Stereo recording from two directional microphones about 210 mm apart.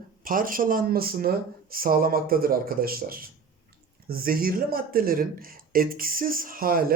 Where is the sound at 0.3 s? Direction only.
40° right (ahead or behind).